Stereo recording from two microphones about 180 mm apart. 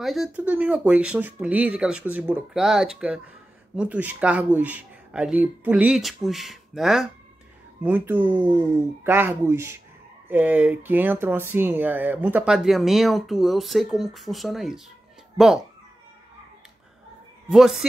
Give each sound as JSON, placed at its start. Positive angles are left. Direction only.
{"t": 0.0, "sound": "speech", "side_deg": 0}
{"t": 17.5, "sound": "speech", "side_deg": 0}